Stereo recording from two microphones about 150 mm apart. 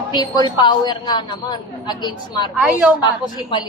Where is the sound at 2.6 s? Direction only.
10° right (ahead or behind).